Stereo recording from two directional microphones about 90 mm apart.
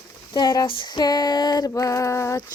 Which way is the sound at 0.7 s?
60° left (ahead or behind).